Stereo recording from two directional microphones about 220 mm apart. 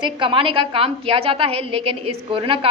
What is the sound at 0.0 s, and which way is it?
A woman's voice, 20° right (ahead or behind).